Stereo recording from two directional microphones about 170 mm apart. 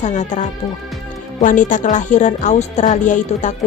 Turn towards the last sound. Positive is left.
turn(degrees=45)  # may be behind; listen again after turning